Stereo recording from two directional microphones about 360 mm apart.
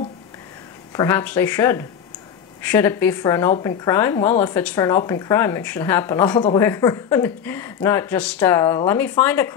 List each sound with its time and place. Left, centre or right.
0.9 s speech: centre